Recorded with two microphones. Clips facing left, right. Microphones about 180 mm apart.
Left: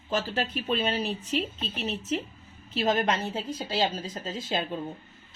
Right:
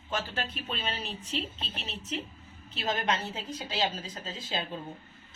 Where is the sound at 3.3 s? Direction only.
40° left (ahead or behind).